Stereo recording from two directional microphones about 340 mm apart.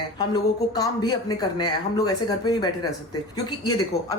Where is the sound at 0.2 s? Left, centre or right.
Centre.